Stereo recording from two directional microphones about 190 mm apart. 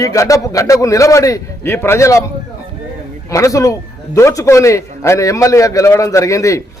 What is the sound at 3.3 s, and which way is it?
A man's voice, 15° left (ahead or behind).